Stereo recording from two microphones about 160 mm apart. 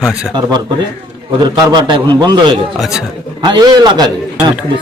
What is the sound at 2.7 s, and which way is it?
Speech, centre (ahead or behind).